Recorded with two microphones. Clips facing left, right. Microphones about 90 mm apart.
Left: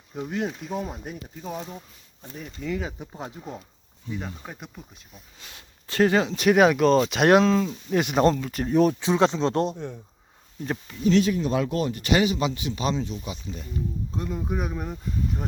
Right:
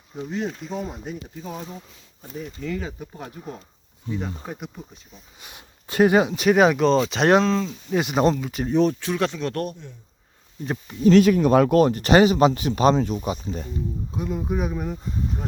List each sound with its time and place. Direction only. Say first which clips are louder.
0.4 s speech: even; 5° left (ahead or behind)
3.0 s speech: even; 20° left (ahead or behind)
5.4 s speech: right 2 dB; 15° right (ahead or behind)
6.3 s speech: right 1 dB; centre (ahead or behind)
9.0 s speech: left 3 dB; 20° left (ahead or behind)
9.7 s speech: left 9 dB; 55° left (ahead or behind)
11.0 s speech: right 6 dB; 55° right (ahead or behind)
11.9 s speech: right 6 dB; 40° right (ahead or behind)
14.1 s speech: right 5 dB; 5° right (ahead or behind)